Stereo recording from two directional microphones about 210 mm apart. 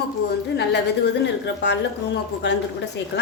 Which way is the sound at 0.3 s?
55° left (ahead or behind).